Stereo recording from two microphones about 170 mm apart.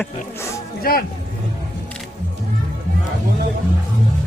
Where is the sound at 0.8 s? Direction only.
60° left (ahead or behind).